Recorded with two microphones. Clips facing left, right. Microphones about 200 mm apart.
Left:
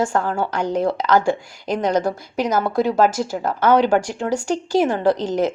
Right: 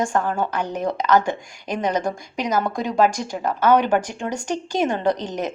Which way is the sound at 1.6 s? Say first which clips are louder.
Left 3 dB; 10° right (ahead or behind).